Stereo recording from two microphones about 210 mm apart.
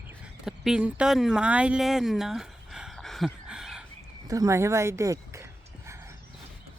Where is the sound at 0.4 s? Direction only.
Centre (ahead or behind).